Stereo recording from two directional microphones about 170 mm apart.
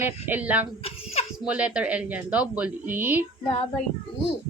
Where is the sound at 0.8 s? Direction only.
35° left (ahead or behind).